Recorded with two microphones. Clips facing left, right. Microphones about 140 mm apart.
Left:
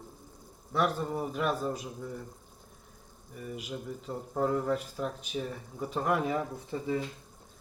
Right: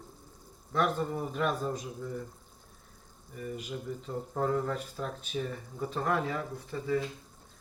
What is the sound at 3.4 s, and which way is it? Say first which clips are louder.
Speech: right 1 dB; 5° left (ahead or behind).